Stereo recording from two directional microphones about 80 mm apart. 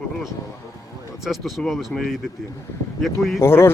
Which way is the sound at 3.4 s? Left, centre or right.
Left.